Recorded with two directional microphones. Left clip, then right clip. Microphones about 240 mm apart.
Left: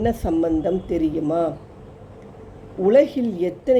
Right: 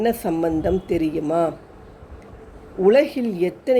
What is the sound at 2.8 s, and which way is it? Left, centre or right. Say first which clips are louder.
Speech: even; centre.